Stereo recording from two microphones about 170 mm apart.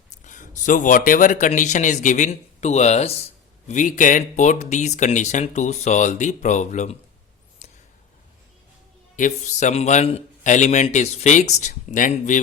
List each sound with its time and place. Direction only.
0.1 s a man's voice: 45° left (ahead or behind)
7.6 s a sound: 45° left (ahead or behind)
9.1 s speech: 45° left (ahead or behind)